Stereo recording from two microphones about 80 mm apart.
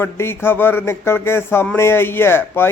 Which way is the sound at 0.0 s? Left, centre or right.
Left.